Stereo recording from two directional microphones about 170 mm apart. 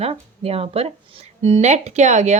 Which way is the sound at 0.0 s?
35° right (ahead or behind).